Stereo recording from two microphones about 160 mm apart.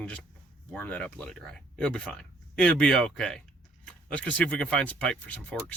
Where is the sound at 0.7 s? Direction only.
10° left (ahead or behind).